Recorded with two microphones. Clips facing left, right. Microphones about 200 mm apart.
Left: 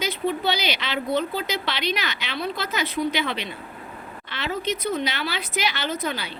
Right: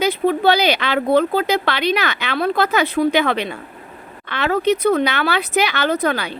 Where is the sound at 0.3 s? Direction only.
55° right (ahead or behind).